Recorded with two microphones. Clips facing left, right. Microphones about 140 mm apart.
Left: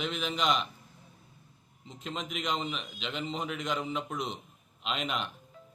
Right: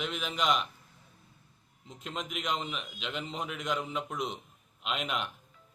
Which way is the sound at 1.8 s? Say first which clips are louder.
Left 1 dB; 5° right (ahead or behind).